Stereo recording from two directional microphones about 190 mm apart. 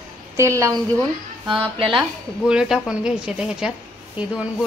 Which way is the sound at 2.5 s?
5° right (ahead or behind).